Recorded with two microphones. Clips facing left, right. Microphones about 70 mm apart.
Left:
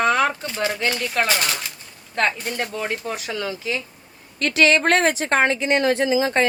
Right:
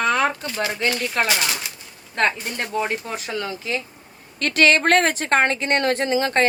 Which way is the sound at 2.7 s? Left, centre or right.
Right.